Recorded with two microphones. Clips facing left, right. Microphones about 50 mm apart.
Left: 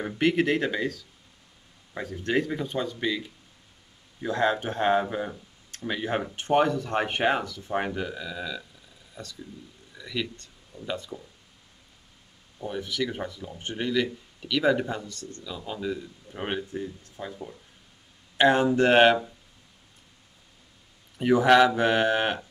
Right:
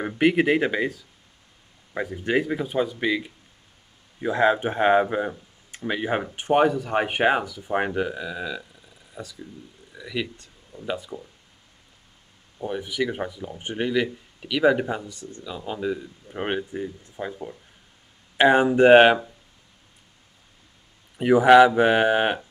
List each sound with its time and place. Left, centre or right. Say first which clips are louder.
0.0 s speech: right 4 dB; centre
12.5 s speech: right 3 dB; centre
18.4 s speech: right 4 dB; centre
21.2 s speech: right 5 dB; centre